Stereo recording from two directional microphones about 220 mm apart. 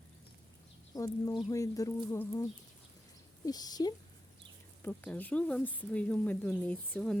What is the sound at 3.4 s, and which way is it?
Speech, 15° left (ahead or behind).